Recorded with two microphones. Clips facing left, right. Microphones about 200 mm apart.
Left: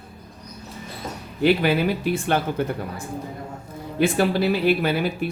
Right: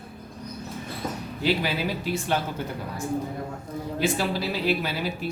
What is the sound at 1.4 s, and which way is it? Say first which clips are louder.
Speech: left 7 dB; 60° left (ahead or behind).